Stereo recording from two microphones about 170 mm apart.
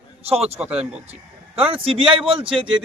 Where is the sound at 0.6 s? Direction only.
10° right (ahead or behind).